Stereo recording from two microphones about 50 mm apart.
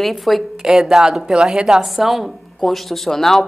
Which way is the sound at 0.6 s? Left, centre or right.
Centre.